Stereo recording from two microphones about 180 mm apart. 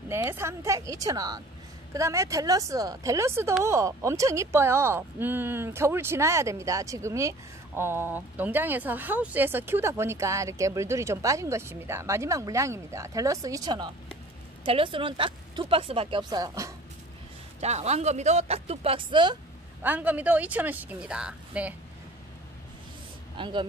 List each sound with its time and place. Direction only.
0.1 s a woman's voice: 15° right (ahead or behind)
17.6 s speech: 40° right (ahead or behind)
19.8 s speech: 10° right (ahead or behind)
23.3 s speech: 25° right (ahead or behind)